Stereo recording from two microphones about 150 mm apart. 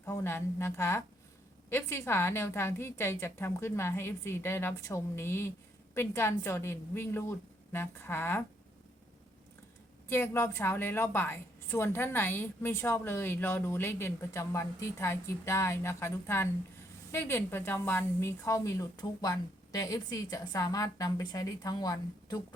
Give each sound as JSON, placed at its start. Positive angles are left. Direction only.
{"t": 0.0, "sound": "a woman's voice", "side_deg": 15}
{"t": 10.1, "sound": "a woman's voice", "side_deg": 15}